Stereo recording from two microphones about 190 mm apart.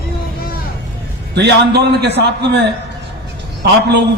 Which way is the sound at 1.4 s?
60° right (ahead or behind).